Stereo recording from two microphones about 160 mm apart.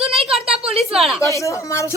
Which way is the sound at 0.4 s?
40° right (ahead or behind).